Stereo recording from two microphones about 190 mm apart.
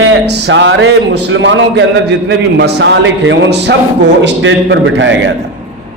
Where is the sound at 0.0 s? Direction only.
70° right (ahead or behind).